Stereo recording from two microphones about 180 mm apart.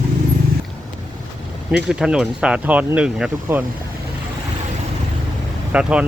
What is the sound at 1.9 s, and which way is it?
Speech, 5° right (ahead or behind).